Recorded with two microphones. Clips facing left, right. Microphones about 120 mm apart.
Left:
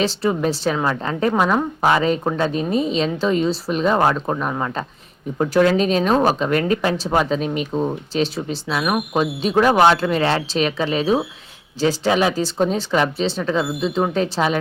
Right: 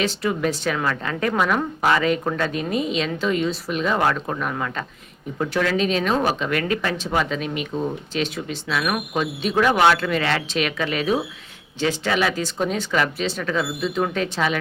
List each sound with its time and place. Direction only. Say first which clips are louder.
0.0 s speech: left 3 dB; 30° left (ahead or behind)